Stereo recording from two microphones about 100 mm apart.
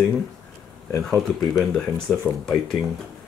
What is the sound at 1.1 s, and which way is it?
Speech, centre (ahead or behind).